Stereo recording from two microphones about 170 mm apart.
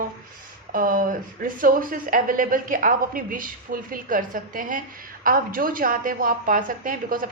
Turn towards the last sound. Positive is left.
turn(degrees=-55)  # may be behind; listen again after turning